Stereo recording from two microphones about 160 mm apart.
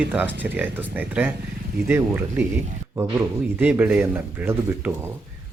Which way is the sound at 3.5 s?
10° right (ahead or behind).